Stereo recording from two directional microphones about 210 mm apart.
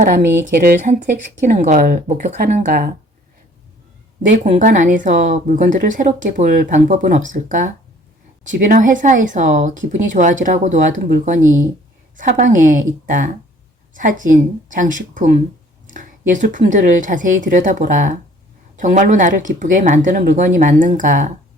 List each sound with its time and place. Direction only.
0.0 s a woman's voice: 40° right (ahead or behind)
4.5 s a woman's voice: 35° right (ahead or behind)